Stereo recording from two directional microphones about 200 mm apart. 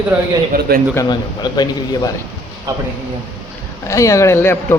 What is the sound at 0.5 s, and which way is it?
Speech, 50° right (ahead or behind).